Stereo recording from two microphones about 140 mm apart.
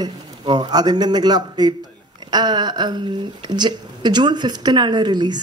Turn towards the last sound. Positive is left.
turn(degrees=-30)  # may be behind; listen again after turning